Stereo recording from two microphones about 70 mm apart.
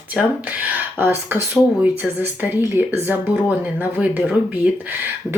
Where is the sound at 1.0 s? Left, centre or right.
Right.